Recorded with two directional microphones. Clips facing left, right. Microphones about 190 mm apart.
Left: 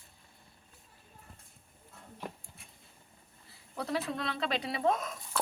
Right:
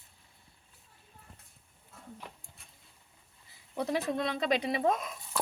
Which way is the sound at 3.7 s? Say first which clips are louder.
Right 3 dB; 20° right (ahead or behind).